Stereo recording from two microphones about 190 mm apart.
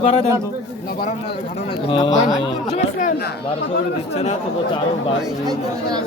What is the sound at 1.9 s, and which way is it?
Speech, 25° left (ahead or behind).